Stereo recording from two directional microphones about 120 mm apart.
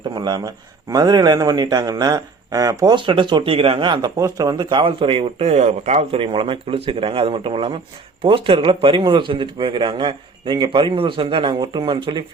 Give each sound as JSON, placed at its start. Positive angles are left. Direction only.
{"t": 0.1, "sound": "a man's voice", "side_deg": -35}
{"t": 6.1, "sound": "a man's voice", "side_deg": -50}